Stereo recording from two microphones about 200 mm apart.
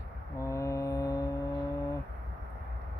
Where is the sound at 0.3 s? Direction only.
15° left (ahead or behind).